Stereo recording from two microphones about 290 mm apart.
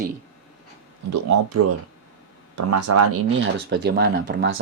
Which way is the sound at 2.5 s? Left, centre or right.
Right.